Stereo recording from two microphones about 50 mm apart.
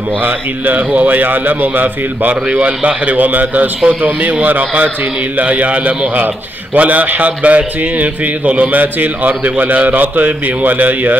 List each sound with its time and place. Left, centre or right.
0.2 s a man's voice: right